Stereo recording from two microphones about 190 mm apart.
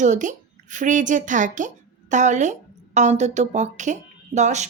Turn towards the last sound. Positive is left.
turn(degrees=-40)  # may be behind; listen again after turning